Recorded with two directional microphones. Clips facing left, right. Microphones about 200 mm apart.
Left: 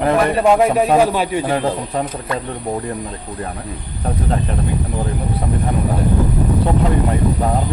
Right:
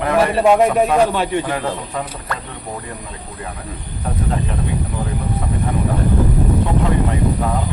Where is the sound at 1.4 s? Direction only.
35° left (ahead or behind).